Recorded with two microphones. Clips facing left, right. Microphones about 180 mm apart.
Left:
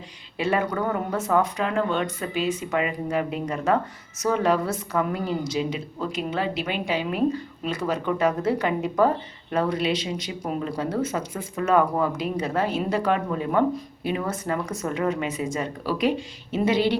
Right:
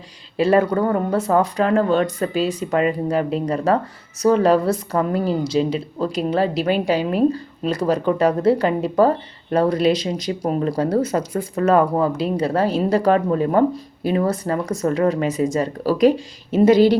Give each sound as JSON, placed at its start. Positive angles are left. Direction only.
{"t": 0.3, "sound": "a woman's voice", "side_deg": -35}